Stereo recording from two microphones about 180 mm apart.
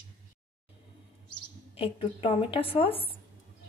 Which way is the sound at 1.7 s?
30° left (ahead or behind).